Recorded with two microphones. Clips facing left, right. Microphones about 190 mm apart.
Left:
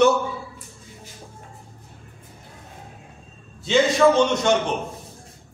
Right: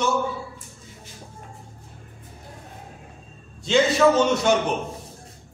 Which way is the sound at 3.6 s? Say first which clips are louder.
Left 1 dB; centre (ahead or behind).